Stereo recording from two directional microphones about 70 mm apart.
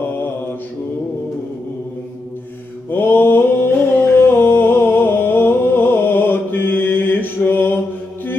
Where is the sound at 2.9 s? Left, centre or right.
Left.